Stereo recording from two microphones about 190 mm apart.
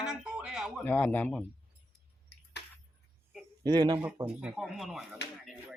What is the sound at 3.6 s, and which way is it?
Speech, 20° right (ahead or behind).